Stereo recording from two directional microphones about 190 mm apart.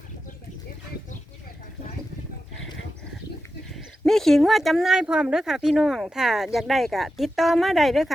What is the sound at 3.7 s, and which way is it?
Speech, centre (ahead or behind).